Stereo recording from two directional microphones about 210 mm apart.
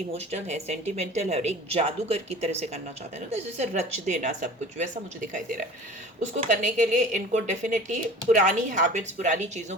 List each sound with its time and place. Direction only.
0.1 s a woman's voice: 30° right (ahead or behind)
6.3 s a woman's voice: 35° right (ahead or behind)